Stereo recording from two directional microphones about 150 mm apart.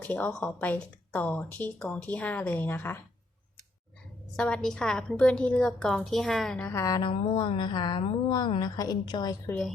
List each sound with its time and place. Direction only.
0.0 s a woman's voice: 10° left (ahead or behind)
4.4 s a woman's voice: 5° left (ahead or behind)
6.7 s speech: 20° left (ahead or behind)